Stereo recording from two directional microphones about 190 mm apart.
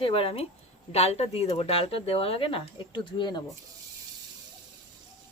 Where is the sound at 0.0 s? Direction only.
30° left (ahead or behind).